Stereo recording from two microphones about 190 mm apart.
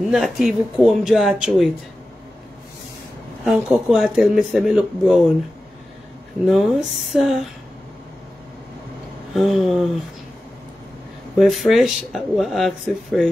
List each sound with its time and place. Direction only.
0.1 s speech: centre (ahead or behind)
3.4 s speech: centre (ahead or behind)
6.4 s speech: centre (ahead or behind)
9.3 s speech: centre (ahead or behind)
11.3 s speech: centre (ahead or behind)